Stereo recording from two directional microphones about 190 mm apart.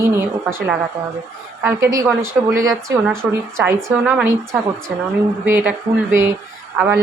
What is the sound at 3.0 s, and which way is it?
Speech, 5° left (ahead or behind).